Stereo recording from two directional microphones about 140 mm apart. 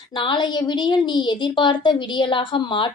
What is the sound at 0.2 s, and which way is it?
A woman's voice, 35° left (ahead or behind).